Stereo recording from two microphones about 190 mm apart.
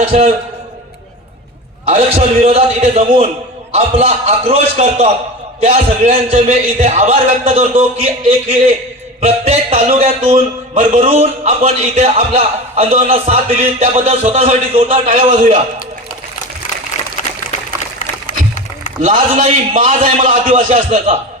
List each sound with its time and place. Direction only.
0.0 s a man's voice: 35° right (ahead or behind)
1.8 s a man's voice: 30° right (ahead or behind)
15.0 s a man's voice: 40° right (ahead or behind)
17.2 s a sound: 45° left (ahead or behind)
18.3 s music: 45° left (ahead or behind)
19.0 s a man's voice: 45° right (ahead or behind)